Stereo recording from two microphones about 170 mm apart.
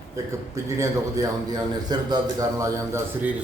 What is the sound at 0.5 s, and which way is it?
A man's voice, 20° right (ahead or behind).